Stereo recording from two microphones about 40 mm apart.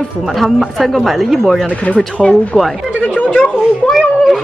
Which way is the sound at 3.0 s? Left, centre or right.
Left.